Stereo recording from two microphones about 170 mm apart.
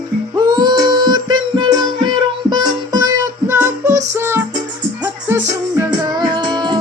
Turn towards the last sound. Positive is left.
turn(degrees=-25)  # may be behind; listen again after turning